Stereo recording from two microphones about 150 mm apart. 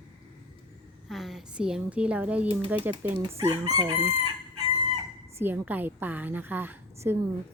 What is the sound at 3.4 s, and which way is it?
Chicken, 20° right (ahead or behind).